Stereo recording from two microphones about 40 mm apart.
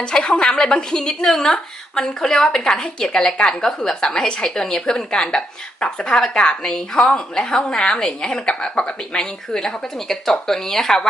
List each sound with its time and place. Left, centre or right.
0.0 s a woman's voice: left